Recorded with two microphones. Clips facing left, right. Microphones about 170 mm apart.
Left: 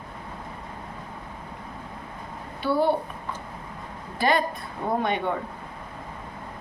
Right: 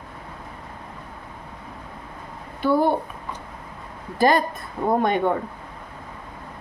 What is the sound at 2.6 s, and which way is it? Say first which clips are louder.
Speech: right 3 dB; 50° right (ahead or behind).